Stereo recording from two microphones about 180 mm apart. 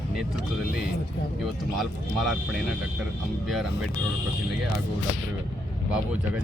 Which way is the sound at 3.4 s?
Centre (ahead or behind).